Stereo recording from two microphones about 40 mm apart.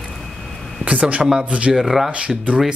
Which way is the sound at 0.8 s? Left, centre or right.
Right.